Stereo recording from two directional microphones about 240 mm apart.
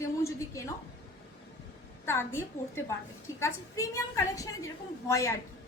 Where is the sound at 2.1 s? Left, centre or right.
Centre.